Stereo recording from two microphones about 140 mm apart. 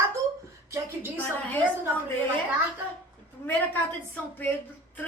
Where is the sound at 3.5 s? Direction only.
15° left (ahead or behind).